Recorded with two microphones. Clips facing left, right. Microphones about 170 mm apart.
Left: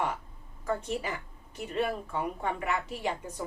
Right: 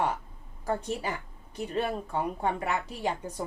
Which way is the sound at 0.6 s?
40° right (ahead or behind).